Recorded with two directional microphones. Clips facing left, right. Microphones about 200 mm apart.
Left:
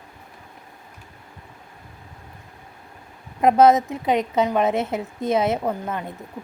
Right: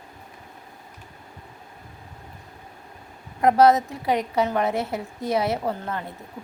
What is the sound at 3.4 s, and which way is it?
A woman's voice, 20° left (ahead or behind).